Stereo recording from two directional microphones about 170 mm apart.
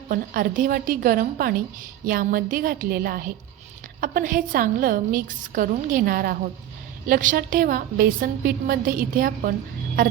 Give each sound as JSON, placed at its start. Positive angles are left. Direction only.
{"t": 0.1, "sound": "a woman's voice", "side_deg": -55}